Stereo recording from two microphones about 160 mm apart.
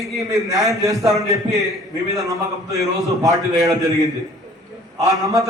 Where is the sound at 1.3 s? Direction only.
Centre (ahead or behind).